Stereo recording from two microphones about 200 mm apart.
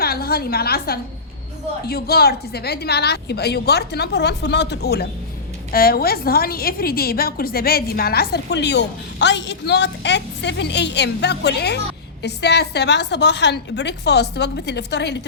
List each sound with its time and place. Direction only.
0.0 s a woman's voice: 50° left (ahead or behind)